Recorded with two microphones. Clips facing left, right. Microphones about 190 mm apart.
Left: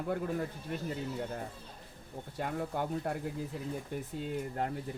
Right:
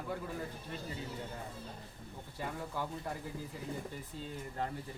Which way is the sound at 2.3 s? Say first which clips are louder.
Left 5 dB; 60° left (ahead or behind).